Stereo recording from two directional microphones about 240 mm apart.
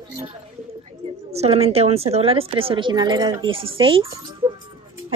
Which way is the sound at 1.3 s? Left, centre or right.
Right.